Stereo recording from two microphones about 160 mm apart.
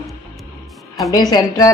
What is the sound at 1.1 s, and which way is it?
Speech, 25° left (ahead or behind).